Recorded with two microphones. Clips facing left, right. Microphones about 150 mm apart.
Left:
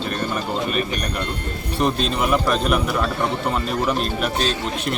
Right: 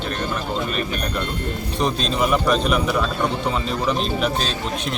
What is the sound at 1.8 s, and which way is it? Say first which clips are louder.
Speech: left 1 dB; 5° left (ahead or behind).